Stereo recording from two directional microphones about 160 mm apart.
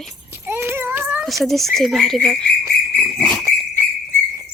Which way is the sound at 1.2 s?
Centre (ahead or behind).